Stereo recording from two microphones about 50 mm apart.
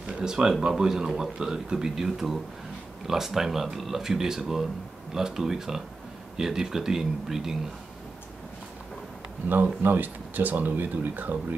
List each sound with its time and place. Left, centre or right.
0.0 s speech: centre
9.5 s speech: right